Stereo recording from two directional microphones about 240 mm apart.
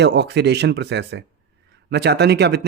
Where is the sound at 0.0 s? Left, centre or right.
Right.